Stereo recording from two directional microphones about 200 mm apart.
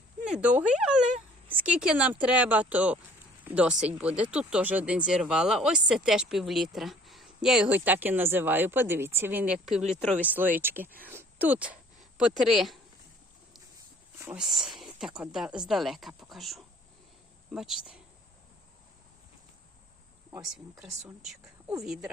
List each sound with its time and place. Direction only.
0.3 s speech: 5° right (ahead or behind)
9.8 s speech: 35° right (ahead or behind)
10.2 s speech: 10° right (ahead or behind)
14.2 s speech: 5° right (ahead or behind)
21.8 s speech: 5° right (ahead or behind)